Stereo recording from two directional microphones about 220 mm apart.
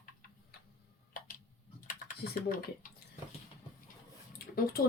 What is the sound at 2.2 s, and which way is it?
Typing, 45° left (ahead or behind).